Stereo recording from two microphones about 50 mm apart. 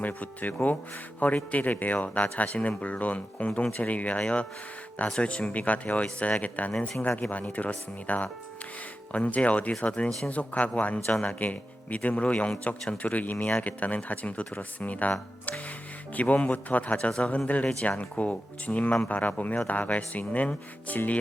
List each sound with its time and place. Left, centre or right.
0.0 s speech: left
16.1 s speech: left